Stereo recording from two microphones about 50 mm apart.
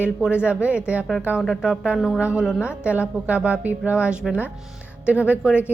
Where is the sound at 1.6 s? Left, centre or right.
Right.